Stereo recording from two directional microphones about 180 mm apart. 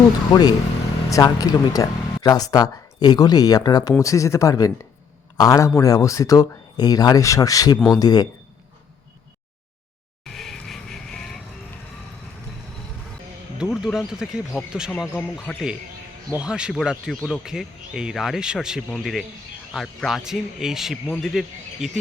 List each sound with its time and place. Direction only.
0.3 s speech: 20° left (ahead or behind)
10.2 s vehicle: centre (ahead or behind)
13.6 s speech: 5° right (ahead or behind)
15.0 s speech: 15° left (ahead or behind)
16.3 s speech: 5° right (ahead or behind)